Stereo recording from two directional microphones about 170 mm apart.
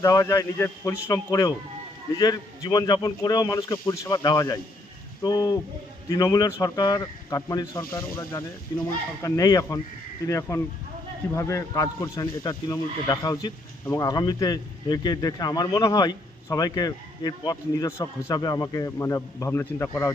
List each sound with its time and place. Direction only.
0.0 s speech: 20° left (ahead or behind)